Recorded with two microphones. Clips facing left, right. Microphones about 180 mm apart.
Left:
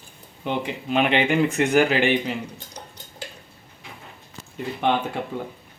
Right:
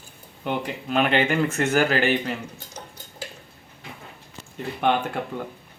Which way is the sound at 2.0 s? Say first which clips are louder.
Left 2 dB; centre (ahead or behind).